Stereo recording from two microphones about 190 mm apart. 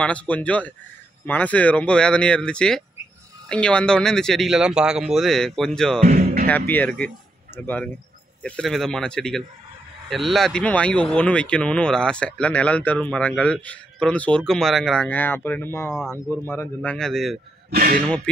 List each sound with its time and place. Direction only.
0.0 s speech: 5° left (ahead or behind)
6.0 s music: 45° right (ahead or behind)
6.7 s speech: 5° left (ahead or behind)
17.6 s speech: 55° right (ahead or behind)
18.0 s speech: 5° left (ahead or behind)